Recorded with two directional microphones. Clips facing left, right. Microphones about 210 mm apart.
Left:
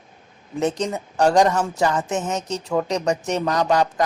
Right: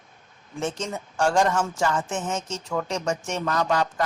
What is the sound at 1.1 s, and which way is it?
Speech, 40° left (ahead or behind).